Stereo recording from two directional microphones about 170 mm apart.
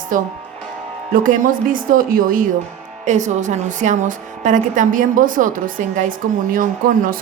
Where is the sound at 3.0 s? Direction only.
45° right (ahead or behind).